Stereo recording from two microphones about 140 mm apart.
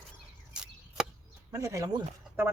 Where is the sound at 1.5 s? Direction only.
20° right (ahead or behind).